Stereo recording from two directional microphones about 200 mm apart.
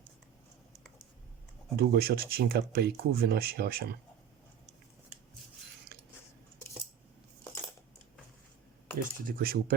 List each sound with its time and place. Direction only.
1.7 s speech: 50° right (ahead or behind)
9.0 s speech: 45° right (ahead or behind)